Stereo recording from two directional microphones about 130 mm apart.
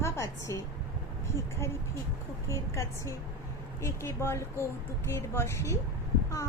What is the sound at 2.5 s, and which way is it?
A woman's voice, 25° left (ahead or behind).